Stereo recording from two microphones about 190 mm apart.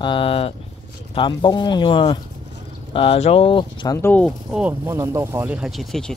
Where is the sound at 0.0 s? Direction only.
25° left (ahead or behind); by 4.3 s 10° left (ahead or behind).